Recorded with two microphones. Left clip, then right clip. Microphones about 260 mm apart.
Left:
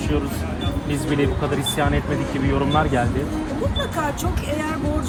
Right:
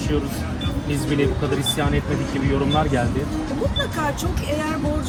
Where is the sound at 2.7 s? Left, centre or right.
Left.